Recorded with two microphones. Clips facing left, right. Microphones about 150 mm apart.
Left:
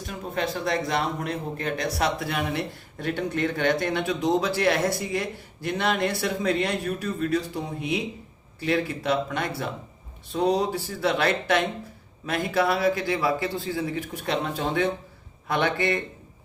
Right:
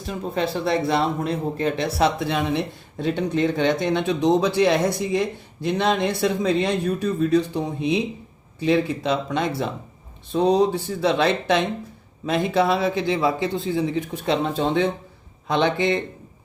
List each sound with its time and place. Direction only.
0.3 s speech: 30° right (ahead or behind)